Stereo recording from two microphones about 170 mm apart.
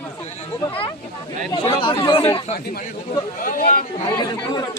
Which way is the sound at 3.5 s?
55° left (ahead or behind).